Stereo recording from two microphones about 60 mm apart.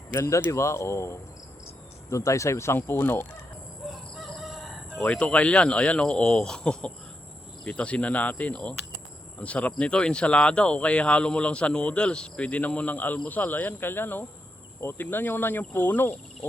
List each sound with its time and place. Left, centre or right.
0.1 s speech: left
4.4 s chicken: centre
5.0 s speech: centre